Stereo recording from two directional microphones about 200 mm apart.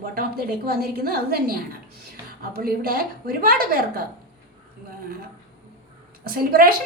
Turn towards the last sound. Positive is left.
turn(degrees=-50)  # may be behind; listen again after turning